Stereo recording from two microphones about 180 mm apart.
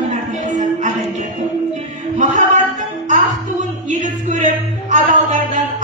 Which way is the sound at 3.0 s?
45° right (ahead or behind).